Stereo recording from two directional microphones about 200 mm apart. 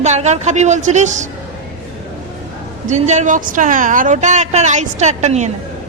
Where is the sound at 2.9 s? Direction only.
35° right (ahead or behind).